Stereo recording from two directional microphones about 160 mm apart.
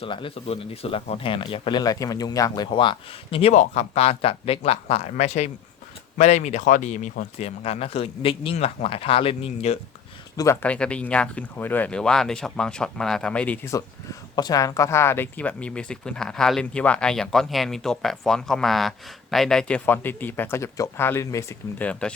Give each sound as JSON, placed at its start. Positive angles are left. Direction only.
{"t": 0.0, "sound": "speech", "side_deg": 35}
{"t": 3.5, "sound": "speech", "side_deg": 45}
{"t": 10.3, "sound": "speech", "side_deg": 20}
{"t": 13.7, "sound": "speech", "side_deg": 20}